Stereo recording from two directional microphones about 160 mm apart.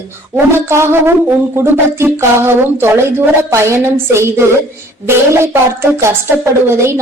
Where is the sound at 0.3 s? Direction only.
15° right (ahead or behind).